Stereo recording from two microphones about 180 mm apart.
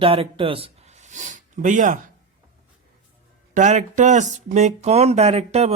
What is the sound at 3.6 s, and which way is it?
Speech, 40° right (ahead or behind).